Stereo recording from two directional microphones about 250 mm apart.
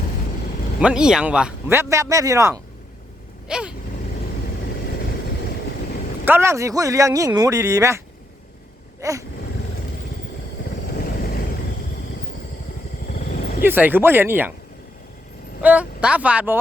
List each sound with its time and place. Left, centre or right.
0.8 s speech: centre
6.2 s speech: centre
9.0 s vehicle: centre
10.9 s vehicle: left
13.1 s vehicle: left
13.6 s speech: centre
15.6 s speech: centre